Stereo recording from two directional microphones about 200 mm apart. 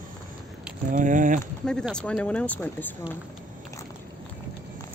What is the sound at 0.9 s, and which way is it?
Speech, 40° right (ahead or behind).